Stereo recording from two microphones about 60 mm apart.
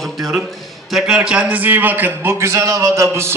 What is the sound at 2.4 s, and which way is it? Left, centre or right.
Speech, right.